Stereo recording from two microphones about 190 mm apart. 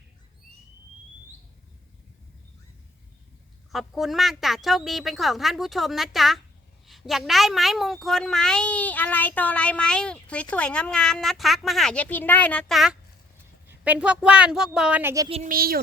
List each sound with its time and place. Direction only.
3.7 s a woman's voice: centre (ahead or behind)
15.4 s speech: 50° right (ahead or behind)